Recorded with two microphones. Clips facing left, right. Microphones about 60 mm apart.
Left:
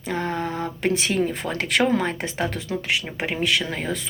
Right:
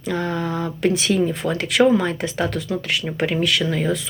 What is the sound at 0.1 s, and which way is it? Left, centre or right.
Speech, left.